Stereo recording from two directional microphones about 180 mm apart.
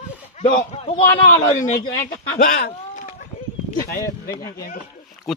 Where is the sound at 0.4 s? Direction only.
30° left (ahead or behind).